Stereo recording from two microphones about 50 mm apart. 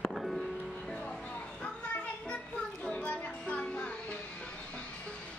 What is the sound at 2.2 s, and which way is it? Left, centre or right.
Child singing, left.